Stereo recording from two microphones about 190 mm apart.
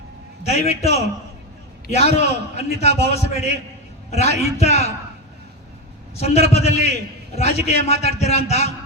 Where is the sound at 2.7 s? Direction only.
35° left (ahead or behind).